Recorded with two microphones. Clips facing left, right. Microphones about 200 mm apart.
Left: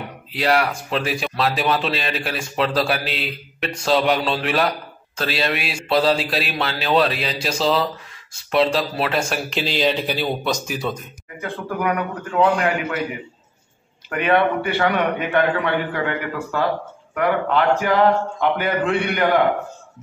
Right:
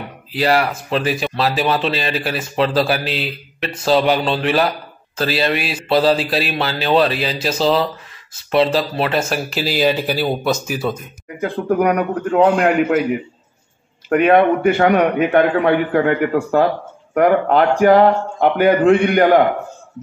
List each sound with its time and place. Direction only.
0.3 s speech: centre (ahead or behind)
11.7 s a man's voice: 40° right (ahead or behind)
14.0 s a man's voice: 45° right (ahead or behind)